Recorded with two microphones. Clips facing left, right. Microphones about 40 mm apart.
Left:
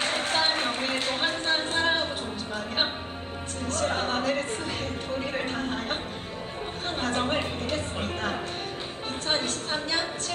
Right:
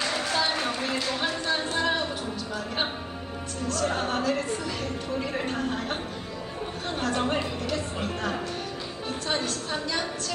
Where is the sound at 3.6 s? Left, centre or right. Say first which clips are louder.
Even; left.